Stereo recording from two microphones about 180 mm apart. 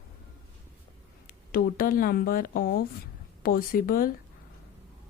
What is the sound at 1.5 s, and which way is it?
Speech, 55° left (ahead or behind).